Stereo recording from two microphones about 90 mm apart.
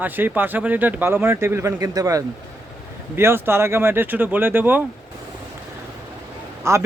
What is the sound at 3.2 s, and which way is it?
Speech, 25° right (ahead or behind).